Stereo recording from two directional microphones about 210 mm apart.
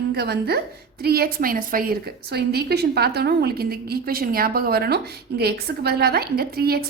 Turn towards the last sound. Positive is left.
turn(degrees=-45)  # may be behind; listen again after turning